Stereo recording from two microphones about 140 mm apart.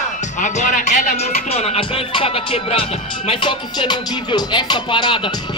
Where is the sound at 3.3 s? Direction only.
35° left (ahead or behind).